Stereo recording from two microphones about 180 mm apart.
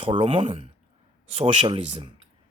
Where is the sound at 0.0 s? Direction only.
30° right (ahead or behind).